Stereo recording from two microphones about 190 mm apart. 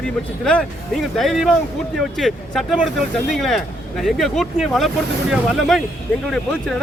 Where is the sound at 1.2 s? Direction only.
Centre (ahead or behind).